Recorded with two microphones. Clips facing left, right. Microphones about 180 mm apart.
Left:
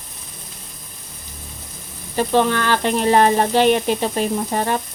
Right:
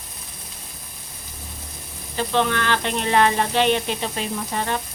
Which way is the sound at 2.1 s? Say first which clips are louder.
Left 5 dB; 40° left (ahead or behind).